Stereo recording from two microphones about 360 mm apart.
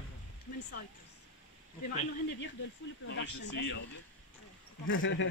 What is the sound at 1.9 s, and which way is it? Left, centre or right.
Speech, left.